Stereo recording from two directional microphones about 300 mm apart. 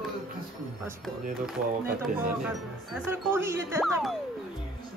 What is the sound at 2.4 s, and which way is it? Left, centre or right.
Speech, centre.